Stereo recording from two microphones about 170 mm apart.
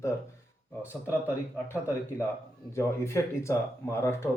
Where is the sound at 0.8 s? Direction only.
10° right (ahead or behind).